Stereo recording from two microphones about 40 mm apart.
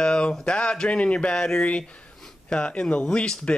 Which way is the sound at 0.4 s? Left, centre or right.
Left.